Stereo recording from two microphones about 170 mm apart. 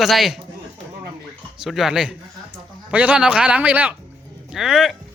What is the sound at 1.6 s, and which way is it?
Speech, centre (ahead or behind).